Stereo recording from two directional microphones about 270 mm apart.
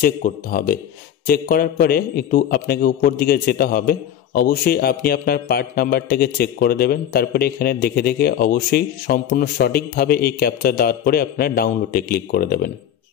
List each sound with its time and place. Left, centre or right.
0.0 s a man's voice: left